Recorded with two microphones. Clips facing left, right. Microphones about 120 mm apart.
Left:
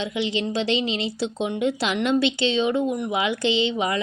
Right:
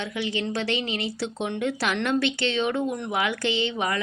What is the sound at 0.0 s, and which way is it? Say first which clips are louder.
Speech: left 3 dB; 20° left (ahead or behind).